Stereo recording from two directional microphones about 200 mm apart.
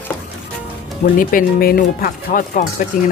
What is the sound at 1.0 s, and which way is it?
Speech, 45° left (ahead or behind).